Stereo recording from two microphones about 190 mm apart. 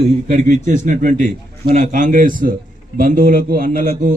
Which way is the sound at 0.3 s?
40° right (ahead or behind).